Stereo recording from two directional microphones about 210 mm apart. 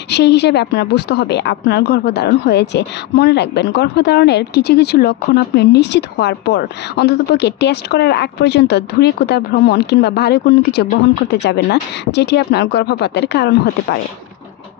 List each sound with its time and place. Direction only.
0.1 s a woman's voice: 55° left (ahead or behind)